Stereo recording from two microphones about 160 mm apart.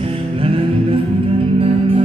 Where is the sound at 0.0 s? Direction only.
35° right (ahead or behind).